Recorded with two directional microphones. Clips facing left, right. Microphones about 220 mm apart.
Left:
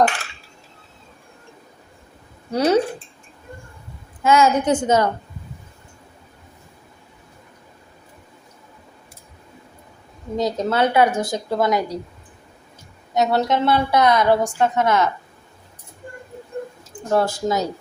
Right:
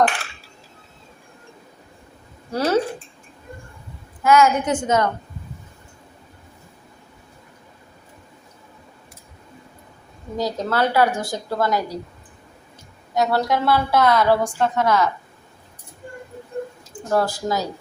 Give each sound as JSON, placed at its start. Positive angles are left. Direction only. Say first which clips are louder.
{"t": 2.5, "sound": "a woman's voice", "louder": "left 3 dB", "side_deg": 20}
{"t": 4.2, "sound": "a woman's voice", "louder": "even", "side_deg": 25}
{"t": 10.3, "sound": "a woman's voice", "louder": "left 2 dB", "side_deg": 20}
{"t": 13.1, "sound": "a woman's voice", "louder": "left 1 dB", "side_deg": 20}
{"t": 17.1, "sound": "a woman's voice", "louder": "left 2 dB", "side_deg": 25}